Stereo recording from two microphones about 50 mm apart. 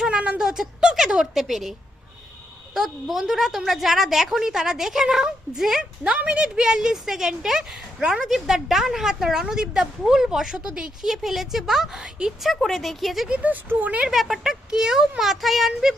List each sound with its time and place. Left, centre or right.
0.1 s a sound: centre
1.1 s speech: centre
2.7 s a woman's voice: centre
6.1 s a woman's voice: right
12.6 s speech: centre
13.2 s speech: right
14.1 s a woman's voice: centre